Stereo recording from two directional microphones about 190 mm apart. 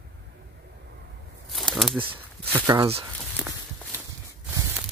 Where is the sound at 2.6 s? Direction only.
15° right (ahead or behind).